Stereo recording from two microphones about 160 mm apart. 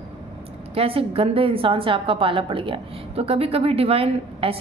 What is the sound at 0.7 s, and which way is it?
A woman's voice, 35° right (ahead or behind).